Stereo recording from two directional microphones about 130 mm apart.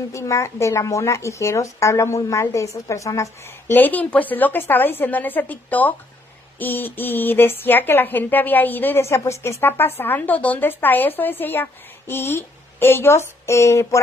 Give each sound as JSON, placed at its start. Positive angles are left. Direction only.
{"t": 0.1, "sound": "speech", "side_deg": 25}
{"t": 3.7, "sound": "speech", "side_deg": 15}